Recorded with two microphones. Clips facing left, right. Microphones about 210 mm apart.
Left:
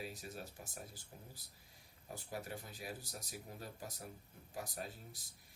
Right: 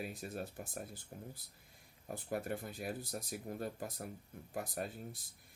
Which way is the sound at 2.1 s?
55° right (ahead or behind).